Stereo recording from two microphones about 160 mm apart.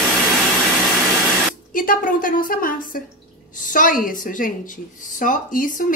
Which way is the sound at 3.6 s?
55° left (ahead or behind).